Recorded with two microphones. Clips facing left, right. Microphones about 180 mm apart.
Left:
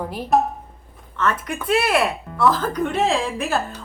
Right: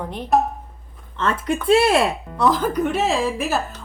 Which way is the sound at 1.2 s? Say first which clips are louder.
Right 2 dB; 30° right (ahead or behind).